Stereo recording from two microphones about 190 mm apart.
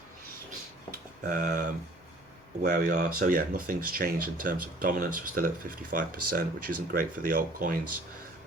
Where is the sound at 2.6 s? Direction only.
55° right (ahead or behind).